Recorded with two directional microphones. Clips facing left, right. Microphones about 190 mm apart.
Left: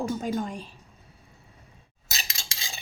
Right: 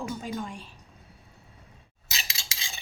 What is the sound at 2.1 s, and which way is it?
Cutlery, 40° left (ahead or behind).